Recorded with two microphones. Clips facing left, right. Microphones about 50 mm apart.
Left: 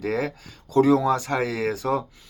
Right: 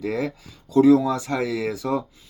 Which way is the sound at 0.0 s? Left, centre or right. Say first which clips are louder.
Even; left.